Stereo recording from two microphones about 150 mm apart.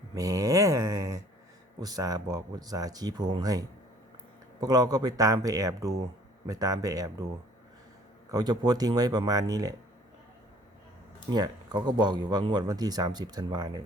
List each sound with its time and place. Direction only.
0.1 s speech: 25° right (ahead or behind)
4.6 s speech: 25° right (ahead or behind)
8.3 s speech: 25° right (ahead or behind)
11.3 s speech: 30° right (ahead or behind)